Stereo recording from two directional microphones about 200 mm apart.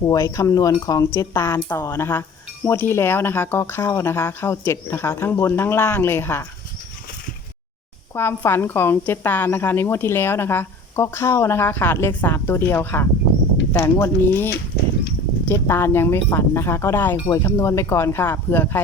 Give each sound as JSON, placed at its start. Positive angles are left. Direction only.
{"t": 0.0, "sound": "a woman's voice", "side_deg": 15}
{"t": 8.1, "sound": "a woman's voice", "side_deg": 10}